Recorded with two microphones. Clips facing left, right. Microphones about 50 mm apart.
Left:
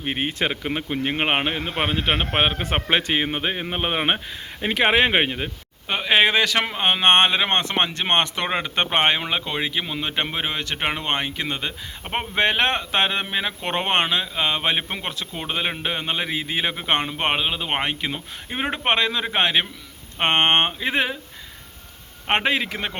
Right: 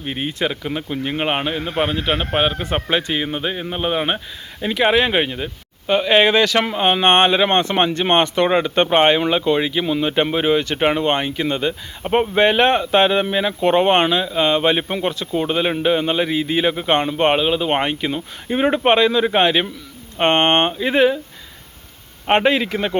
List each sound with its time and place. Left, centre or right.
0.0 s speech: left
5.9 s speech: centre
22.3 s speech: centre